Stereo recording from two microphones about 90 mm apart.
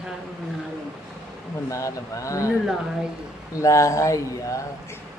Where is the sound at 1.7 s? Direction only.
35° left (ahead or behind).